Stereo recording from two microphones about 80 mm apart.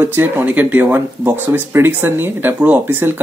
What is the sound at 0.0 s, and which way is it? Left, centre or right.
Speech, right.